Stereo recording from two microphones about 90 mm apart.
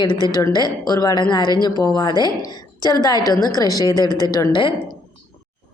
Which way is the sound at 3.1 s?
45° right (ahead or behind).